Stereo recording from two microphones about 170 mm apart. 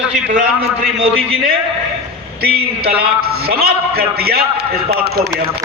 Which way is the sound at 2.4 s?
65° right (ahead or behind).